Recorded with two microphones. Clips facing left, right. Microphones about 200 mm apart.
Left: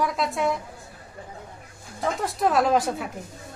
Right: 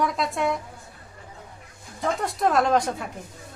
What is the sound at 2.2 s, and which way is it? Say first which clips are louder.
Speech: left 1 dB; centre (ahead or behind).